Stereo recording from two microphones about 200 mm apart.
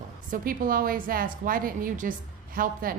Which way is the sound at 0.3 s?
45° right (ahead or behind).